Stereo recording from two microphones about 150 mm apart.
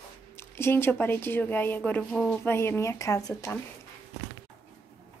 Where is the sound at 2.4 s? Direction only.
15° left (ahead or behind).